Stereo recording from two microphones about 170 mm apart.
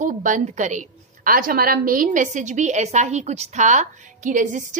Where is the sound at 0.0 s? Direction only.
50° right (ahead or behind).